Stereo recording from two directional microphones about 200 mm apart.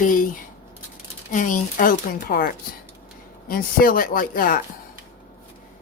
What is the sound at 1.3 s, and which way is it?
Speech, 40° left (ahead or behind).